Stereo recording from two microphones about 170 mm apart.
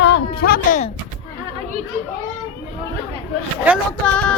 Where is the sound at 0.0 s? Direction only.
70° left (ahead or behind).